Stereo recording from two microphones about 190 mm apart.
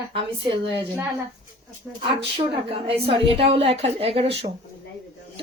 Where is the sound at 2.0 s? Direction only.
30° right (ahead or behind).